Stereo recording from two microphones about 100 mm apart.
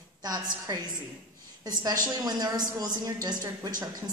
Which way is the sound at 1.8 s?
45° right (ahead or behind).